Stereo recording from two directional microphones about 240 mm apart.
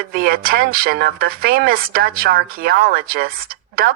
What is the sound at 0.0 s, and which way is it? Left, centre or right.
A woman's voice, right.